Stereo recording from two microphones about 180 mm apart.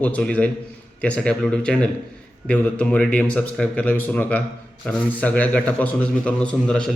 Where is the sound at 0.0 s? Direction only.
5° left (ahead or behind).